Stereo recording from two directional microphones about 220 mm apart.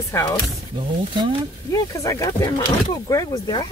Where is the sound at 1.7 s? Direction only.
15° left (ahead or behind).